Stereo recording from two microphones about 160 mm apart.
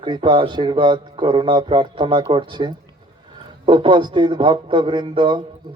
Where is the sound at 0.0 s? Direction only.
30° right (ahead or behind).